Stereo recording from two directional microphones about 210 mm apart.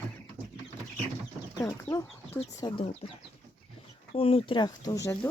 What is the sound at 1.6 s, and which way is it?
Speech, 15° left (ahead or behind).